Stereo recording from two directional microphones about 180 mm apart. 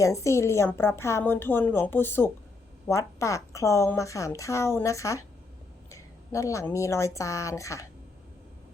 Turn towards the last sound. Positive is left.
turn(degrees=15)  # may be behind; listen again after turning